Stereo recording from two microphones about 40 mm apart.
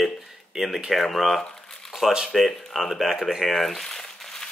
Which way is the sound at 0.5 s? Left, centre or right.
Centre.